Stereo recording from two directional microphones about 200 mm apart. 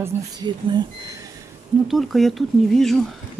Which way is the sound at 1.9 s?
Centre (ahead or behind).